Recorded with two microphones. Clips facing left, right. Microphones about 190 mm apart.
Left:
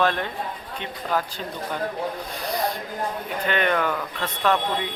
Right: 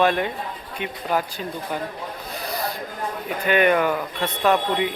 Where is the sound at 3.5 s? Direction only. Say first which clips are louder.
Right 5 dB; 10° right (ahead or behind).